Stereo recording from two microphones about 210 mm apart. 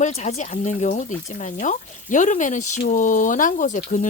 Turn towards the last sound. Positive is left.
turn(degrees=35)  # may be behind; listen again after turning